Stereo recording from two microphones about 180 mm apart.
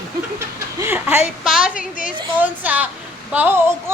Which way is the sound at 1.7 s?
45° left (ahead or behind).